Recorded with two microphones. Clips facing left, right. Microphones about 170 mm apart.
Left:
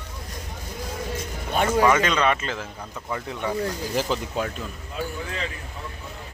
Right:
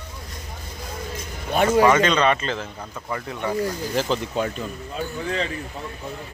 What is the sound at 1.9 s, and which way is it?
Speech, 5° left (ahead or behind).